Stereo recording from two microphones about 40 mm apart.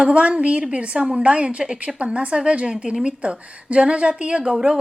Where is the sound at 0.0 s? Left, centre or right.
Right.